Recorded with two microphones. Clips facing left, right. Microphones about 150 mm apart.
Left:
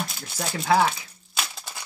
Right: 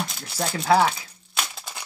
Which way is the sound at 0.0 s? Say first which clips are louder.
Right 3 dB; centre (ahead or behind).